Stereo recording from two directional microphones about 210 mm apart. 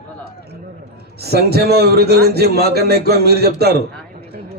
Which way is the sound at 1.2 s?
50° right (ahead or behind).